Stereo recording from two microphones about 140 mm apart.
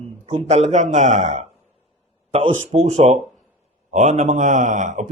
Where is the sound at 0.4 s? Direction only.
55° right (ahead or behind).